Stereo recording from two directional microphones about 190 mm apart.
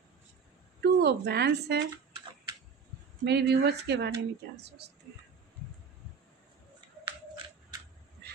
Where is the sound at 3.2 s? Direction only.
60° right (ahead or behind).